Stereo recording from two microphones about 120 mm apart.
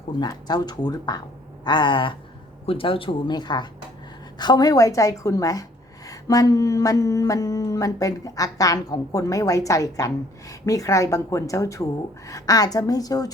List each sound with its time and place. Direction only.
0.2 s speech: 35° left (ahead or behind)